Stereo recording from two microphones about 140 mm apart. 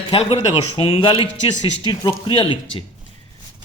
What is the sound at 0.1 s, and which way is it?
Speech, 45° left (ahead or behind).